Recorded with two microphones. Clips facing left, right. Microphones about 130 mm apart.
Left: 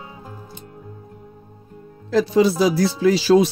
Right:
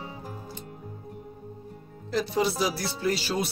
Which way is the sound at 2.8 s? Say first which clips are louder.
Left 12 dB; 90° left.